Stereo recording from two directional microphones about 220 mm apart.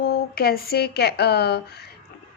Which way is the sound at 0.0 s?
45° left (ahead or behind).